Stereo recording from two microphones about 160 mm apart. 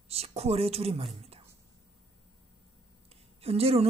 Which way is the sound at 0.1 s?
40° right (ahead or behind).